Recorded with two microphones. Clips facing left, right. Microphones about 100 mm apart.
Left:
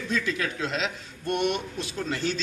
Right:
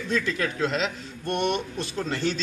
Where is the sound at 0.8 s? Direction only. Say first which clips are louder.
Right 1 dB; 5° left (ahead or behind).